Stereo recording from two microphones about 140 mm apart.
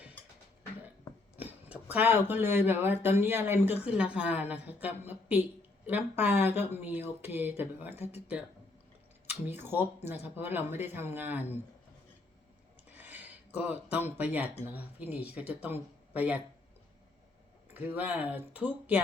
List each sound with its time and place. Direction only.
1.7 s speech: 10° right (ahead or behind)
9.5 s speech: 15° right (ahead or behind)
12.9 s speech: 10° right (ahead or behind)
17.7 s speech: 10° right (ahead or behind)